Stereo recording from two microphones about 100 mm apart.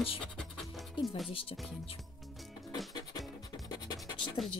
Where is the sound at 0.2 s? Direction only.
Centre (ahead or behind).